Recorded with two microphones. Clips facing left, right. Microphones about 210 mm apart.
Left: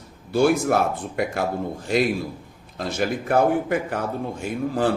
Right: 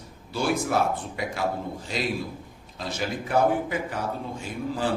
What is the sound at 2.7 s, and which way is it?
Speech, 55° left (ahead or behind).